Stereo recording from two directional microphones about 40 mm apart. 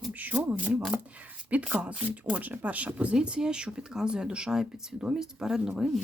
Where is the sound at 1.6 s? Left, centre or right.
Right.